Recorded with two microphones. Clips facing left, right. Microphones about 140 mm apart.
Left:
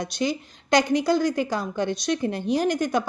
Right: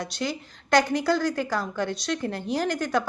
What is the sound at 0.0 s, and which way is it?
A woman's voice, 15° left (ahead or behind).